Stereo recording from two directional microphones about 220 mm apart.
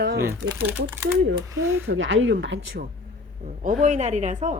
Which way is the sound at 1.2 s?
70° right (ahead or behind).